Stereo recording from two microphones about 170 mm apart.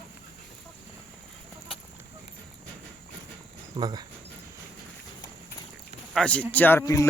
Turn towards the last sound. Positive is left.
turn(degrees=20)  # may be behind; listen again after turning